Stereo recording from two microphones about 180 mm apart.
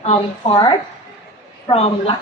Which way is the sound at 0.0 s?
35° left (ahead or behind).